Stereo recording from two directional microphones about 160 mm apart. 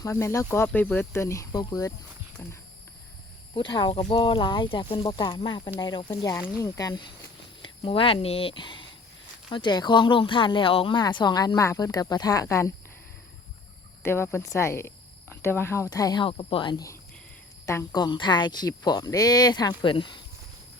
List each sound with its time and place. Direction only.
0.0 s speech: 15° left (ahead or behind)
3.5 s speech: 30° left (ahead or behind)
14.0 s speech: 15° left (ahead or behind); by 20.2 s 30° left (ahead or behind)